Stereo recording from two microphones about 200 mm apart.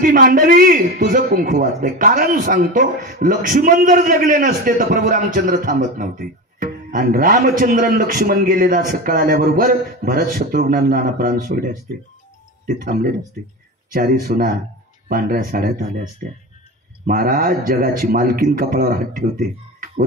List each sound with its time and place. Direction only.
0.0 s a man's voice: 45° right (ahead or behind)